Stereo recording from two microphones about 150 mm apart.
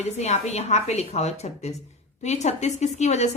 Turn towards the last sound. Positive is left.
turn(degrees=50)  # may be behind; listen again after turning